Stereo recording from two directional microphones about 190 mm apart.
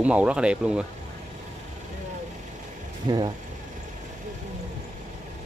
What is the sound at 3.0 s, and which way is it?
Speech, 20° right (ahead or behind).